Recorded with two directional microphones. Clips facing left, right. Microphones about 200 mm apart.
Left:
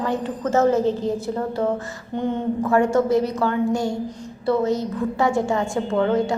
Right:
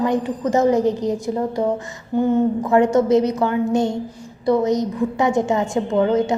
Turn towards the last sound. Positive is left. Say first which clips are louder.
# right 2 dB
turn(degrees=-20)  # may be behind; listen again after turning